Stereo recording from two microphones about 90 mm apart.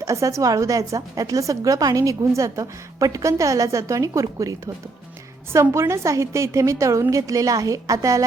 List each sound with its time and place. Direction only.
0.0 s a woman's voice: 35° right (ahead or behind)